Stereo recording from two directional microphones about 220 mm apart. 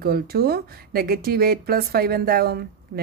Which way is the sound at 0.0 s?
45° right (ahead or behind).